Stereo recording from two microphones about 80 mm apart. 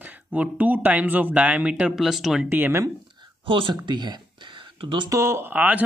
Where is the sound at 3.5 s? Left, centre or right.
Right.